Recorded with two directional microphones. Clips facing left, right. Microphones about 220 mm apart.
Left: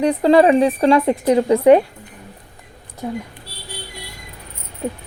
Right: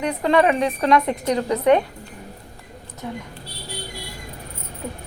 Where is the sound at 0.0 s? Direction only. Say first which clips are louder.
Left 6 dB; 30° left (ahead or behind).